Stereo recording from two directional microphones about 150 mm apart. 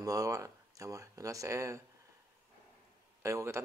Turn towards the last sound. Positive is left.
turn(degrees=-20)  # may be behind; listen again after turning